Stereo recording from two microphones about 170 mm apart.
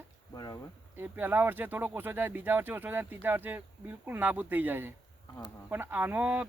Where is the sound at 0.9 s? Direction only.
10° right (ahead or behind).